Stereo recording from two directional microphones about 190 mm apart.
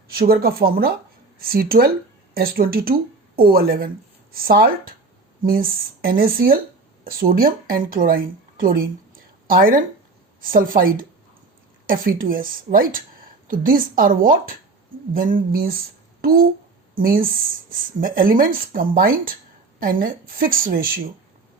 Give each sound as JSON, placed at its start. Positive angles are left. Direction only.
{"t": 0.1, "sound": "a woman's voice", "side_deg": -50}